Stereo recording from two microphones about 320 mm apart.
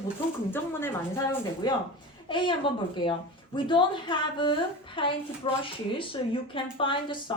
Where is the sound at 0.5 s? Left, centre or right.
Centre.